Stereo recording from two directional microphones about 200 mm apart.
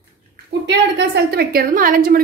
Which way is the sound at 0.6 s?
55° right (ahead or behind).